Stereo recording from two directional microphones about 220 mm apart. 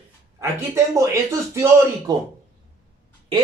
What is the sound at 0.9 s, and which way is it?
Speech, 15° right (ahead or behind).